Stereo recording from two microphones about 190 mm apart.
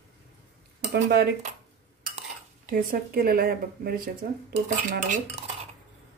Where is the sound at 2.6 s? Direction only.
55° right (ahead or behind).